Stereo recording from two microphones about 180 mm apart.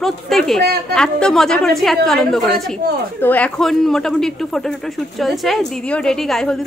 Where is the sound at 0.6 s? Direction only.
60° right (ahead or behind).